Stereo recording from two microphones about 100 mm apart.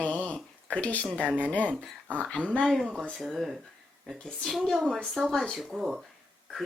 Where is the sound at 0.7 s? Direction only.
15° left (ahead or behind).